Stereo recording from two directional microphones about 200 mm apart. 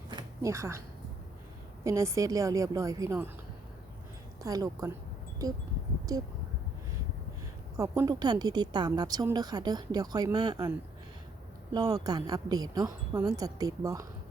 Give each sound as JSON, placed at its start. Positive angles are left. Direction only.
{"t": 0.1, "sound": "a sound", "side_deg": -20}
{"t": 1.8, "sound": "speech", "side_deg": -15}
{"t": 4.4, "sound": "speech", "side_deg": -15}
{"t": 7.8, "sound": "speech", "side_deg": -15}
{"t": 11.7, "sound": "speech", "side_deg": -15}